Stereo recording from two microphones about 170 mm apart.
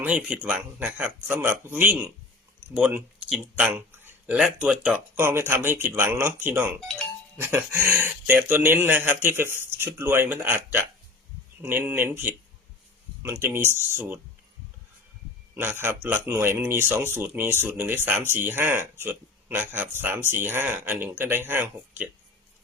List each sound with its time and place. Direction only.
0.0 s speech: 10° right (ahead or behind)
3.8 s a sound: 10° right (ahead or behind)
4.6 s speech: 5° right (ahead or behind)
15.5 s speech: 10° right (ahead or behind)